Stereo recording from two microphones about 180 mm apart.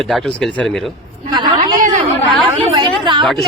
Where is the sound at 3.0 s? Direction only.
25° right (ahead or behind).